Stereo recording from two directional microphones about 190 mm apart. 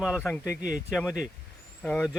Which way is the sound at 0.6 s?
45° right (ahead or behind).